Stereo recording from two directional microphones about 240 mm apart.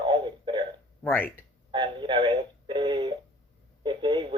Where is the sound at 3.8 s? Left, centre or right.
Centre.